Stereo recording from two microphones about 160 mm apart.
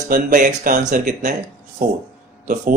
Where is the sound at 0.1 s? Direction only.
55° right (ahead or behind).